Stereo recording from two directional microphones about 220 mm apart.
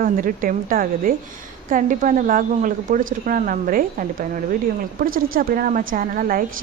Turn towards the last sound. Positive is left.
turn(degrees=-40)  # may be behind; listen again after turning